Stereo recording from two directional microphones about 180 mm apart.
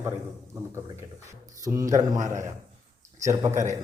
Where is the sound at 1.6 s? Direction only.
15° right (ahead or behind).